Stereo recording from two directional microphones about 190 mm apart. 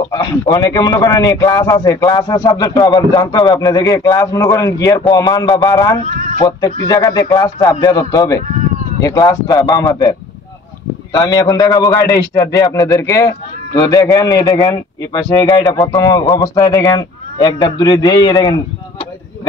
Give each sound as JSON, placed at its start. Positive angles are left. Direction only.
{"t": 0.1, "sound": "a man's voice", "side_deg": 20}